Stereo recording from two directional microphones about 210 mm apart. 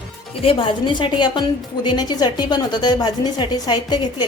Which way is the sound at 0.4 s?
25° left (ahead or behind).